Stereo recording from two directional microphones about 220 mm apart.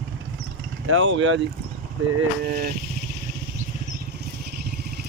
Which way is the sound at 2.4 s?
45° right (ahead or behind).